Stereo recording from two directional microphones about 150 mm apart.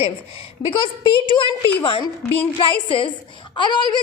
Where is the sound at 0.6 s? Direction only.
35° left (ahead or behind).